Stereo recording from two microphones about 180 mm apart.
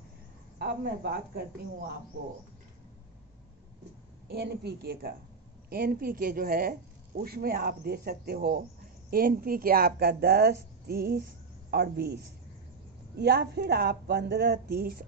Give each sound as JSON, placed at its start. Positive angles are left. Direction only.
{"t": 0.6, "sound": "speech", "side_deg": -60}
{"t": 4.3, "sound": "speech", "side_deg": -65}
{"t": 13.2, "sound": "speech", "side_deg": -65}